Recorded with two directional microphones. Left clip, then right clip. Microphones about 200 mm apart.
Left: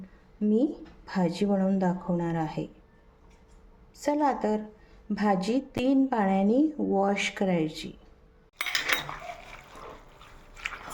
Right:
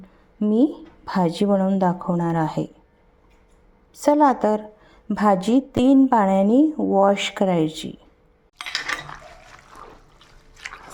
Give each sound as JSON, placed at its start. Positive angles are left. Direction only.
{"t": 0.3, "sound": "a woman's voice", "side_deg": -35}
{"t": 3.9, "sound": "a woman's voice", "side_deg": -35}